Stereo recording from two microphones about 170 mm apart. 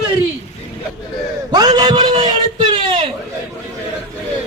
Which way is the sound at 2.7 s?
30° right (ahead or behind).